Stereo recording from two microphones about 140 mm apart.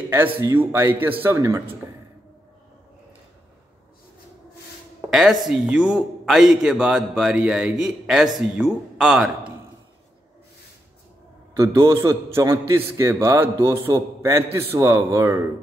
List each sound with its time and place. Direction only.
0.1 s speech: 20° right (ahead or behind)
5.1 s a man's voice: 5° right (ahead or behind)
11.5 s a man's voice: 20° right (ahead or behind)